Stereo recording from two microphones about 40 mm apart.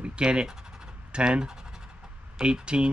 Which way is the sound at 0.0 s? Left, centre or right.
Right.